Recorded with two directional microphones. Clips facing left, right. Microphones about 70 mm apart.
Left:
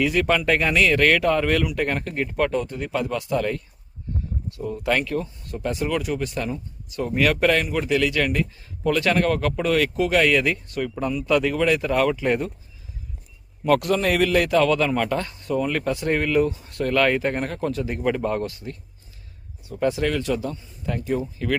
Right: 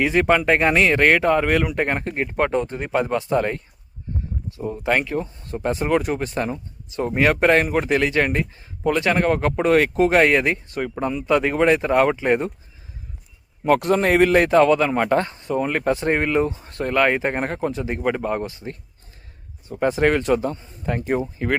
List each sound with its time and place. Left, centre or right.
0.0 s speech: right
8.8 s speech: right
13.7 s speech: right
15.1 s speech: right
21.3 s speech: right